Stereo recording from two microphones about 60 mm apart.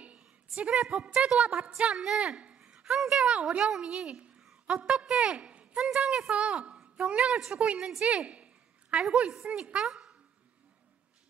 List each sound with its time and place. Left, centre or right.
0.0 s a woman's voice: centre